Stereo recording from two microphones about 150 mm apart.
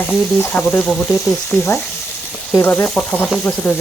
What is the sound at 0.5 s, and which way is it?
Stir, 10° left (ahead or behind).